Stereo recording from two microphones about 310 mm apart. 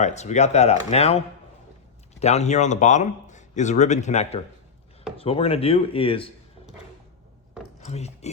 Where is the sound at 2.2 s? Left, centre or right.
Left.